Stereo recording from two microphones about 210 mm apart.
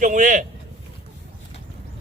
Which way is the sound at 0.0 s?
35° right (ahead or behind).